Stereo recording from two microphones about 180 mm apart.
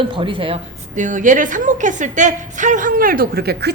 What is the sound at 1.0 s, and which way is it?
A woman's voice, 45° right (ahead or behind).